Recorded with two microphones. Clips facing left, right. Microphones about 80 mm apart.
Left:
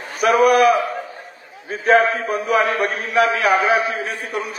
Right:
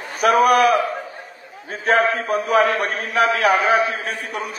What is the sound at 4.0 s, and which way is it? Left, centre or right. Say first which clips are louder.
Speech: left 2 dB; right.